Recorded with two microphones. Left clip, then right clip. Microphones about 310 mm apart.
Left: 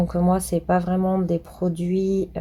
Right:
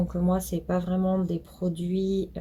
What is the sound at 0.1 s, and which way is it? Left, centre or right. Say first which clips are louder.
Speech: left 7 dB; left.